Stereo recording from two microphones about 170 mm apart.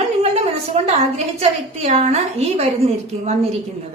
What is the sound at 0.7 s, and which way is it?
A woman's voice, 35° right (ahead or behind).